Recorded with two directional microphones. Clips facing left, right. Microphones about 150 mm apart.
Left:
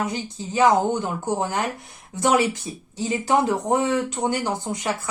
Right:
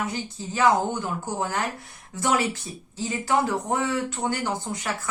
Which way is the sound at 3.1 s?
20° left (ahead or behind).